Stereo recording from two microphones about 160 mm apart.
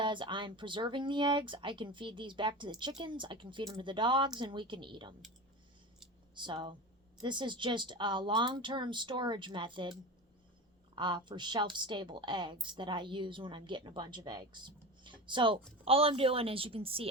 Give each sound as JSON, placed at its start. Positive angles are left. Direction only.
{"t": 0.0, "sound": "a woman's voice", "side_deg": -30}
{"t": 6.3, "sound": "a woman's voice", "side_deg": -30}
{"t": 10.9, "sound": "a woman's voice", "side_deg": -30}